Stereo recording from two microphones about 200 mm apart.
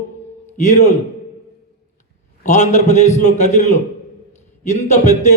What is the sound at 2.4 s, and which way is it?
A man's voice, 35° left (ahead or behind).